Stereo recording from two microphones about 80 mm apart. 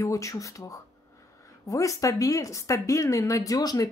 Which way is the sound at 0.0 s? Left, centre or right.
Left.